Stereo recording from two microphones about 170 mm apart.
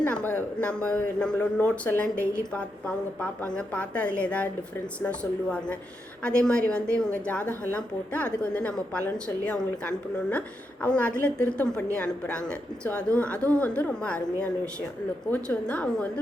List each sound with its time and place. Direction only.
0.0 s a woman's voice: 10° left (ahead or behind)